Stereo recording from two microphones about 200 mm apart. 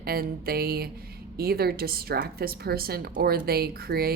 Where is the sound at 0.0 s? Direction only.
50° right (ahead or behind).